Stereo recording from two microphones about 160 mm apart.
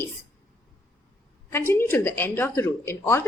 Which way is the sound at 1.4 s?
15° left (ahead or behind).